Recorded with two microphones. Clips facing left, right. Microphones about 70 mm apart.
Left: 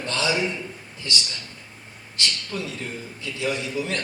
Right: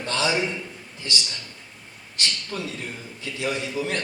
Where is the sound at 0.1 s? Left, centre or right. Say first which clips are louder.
Right 1 dB; right.